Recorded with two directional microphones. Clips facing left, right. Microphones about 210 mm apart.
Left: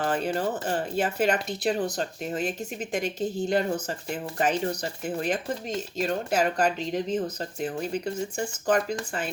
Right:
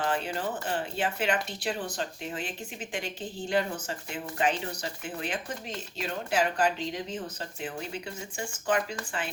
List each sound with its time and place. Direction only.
0.0 s speech: 40° left (ahead or behind)